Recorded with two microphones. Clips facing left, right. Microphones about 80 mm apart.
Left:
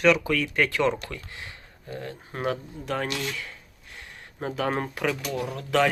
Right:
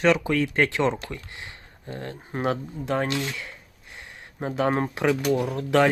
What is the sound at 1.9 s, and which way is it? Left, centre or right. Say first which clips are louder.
Speech: right 1 dB; right.